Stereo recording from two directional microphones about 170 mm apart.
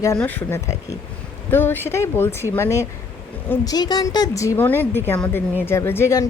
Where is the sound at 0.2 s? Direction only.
10° left (ahead or behind).